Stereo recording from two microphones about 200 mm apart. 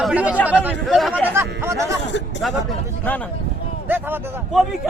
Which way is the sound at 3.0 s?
5° left (ahead or behind).